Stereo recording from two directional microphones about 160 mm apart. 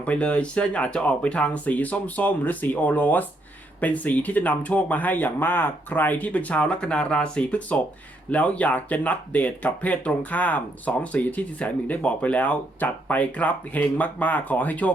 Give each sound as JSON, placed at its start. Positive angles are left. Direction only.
{"t": 0.0, "sound": "speech", "side_deg": 10}